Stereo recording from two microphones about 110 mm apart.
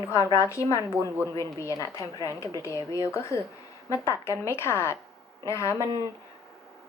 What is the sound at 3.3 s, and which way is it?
A woman's voice, 25° left (ahead or behind).